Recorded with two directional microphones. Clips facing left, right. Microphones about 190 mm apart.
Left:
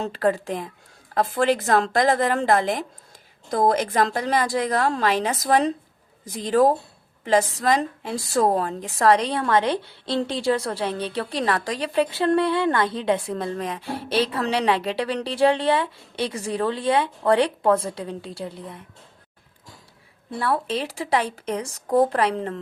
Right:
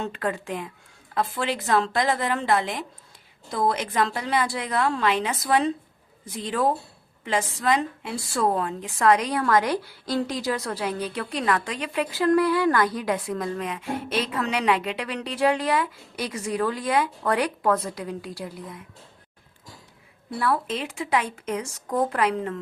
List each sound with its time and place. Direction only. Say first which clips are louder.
0.0 s a woman's voice: left 6 dB; 35° left (ahead or behind)
20.3 s speech: left 1 dB; 30° left (ahead or behind)